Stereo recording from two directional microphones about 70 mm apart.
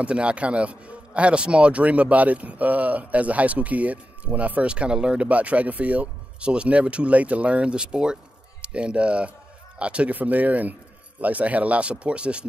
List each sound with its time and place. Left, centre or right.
0.0 s a man's voice: centre